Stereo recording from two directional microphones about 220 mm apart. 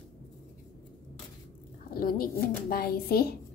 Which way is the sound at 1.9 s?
40° left (ahead or behind).